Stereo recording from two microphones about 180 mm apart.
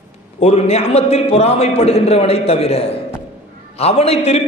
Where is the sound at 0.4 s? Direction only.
35° left (ahead or behind).